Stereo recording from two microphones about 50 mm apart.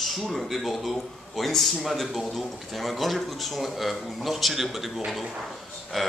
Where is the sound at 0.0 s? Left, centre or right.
Centre.